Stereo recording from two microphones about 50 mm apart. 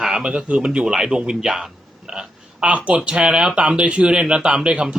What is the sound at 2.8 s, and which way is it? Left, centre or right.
Speech, right.